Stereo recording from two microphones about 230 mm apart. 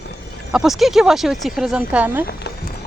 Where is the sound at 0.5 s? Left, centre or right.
Centre.